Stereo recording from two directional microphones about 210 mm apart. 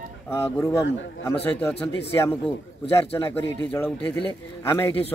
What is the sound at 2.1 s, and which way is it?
A man's voice, 15° left (ahead or behind).